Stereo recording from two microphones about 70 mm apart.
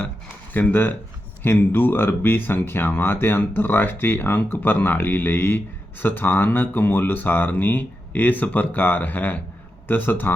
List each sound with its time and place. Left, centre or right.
0.5 s speech: left